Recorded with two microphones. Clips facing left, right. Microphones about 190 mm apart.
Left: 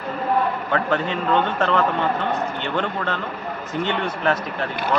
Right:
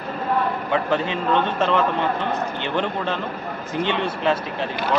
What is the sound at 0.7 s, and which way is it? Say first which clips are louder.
Speech: even; 15° right (ahead or behind).